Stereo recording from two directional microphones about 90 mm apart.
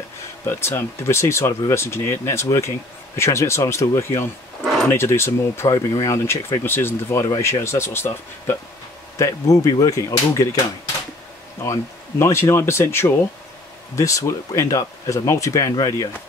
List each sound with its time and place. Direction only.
0.5 s speech: 25° left (ahead or behind)
11.6 s speech: 30° left (ahead or behind)